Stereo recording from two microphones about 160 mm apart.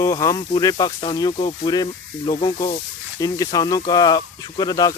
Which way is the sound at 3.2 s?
20° left (ahead or behind).